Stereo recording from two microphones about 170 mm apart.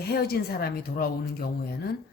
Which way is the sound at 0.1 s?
65° left (ahead or behind).